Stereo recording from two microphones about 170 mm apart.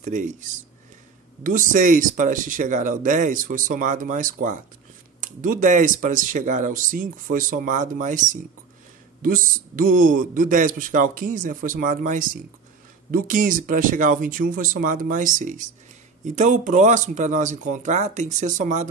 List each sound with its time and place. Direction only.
0.0 s speech: 50° right (ahead or behind)